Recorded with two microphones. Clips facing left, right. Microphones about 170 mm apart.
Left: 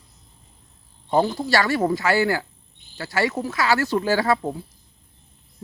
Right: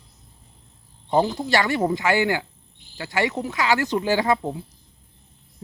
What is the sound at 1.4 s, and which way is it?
Speech, 20° right (ahead or behind).